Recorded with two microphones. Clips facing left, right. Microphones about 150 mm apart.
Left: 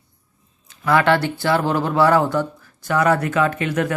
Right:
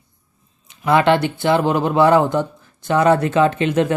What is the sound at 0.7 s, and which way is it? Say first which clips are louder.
Speech: right 2 dB; 20° right (ahead or behind).